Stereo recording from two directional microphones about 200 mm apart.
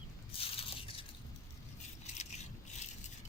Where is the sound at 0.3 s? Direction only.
30° left (ahead or behind).